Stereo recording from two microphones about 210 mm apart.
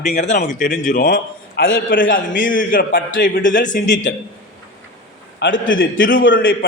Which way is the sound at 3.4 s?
40° left (ahead or behind).